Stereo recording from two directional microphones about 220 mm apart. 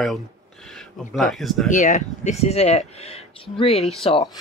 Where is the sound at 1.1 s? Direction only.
Centre (ahead or behind).